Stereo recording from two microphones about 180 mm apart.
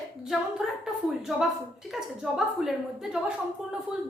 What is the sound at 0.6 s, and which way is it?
Speech, centre (ahead or behind).